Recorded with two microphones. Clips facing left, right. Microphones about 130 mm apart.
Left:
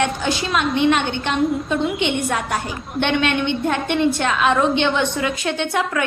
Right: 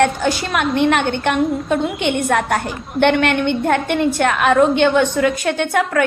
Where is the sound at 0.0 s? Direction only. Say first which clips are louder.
Right 4 dB; 55° right (ahead or behind).